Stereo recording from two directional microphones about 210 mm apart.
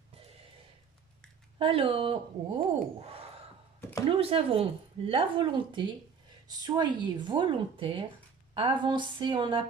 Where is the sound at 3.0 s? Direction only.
30° right (ahead or behind).